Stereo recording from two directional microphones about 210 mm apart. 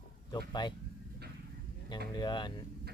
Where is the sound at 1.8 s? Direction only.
20° left (ahead or behind).